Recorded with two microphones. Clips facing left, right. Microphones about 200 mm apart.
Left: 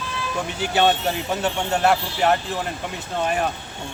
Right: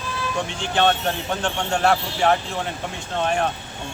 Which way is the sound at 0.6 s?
5° left (ahead or behind).